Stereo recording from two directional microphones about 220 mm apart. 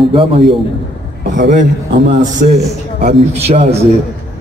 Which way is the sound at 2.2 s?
35° right (ahead or behind).